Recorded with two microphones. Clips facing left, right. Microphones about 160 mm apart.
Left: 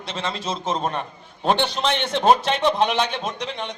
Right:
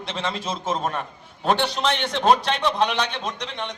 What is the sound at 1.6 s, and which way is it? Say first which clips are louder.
A man's voice: left 1 dB; 25° left (ahead or behind).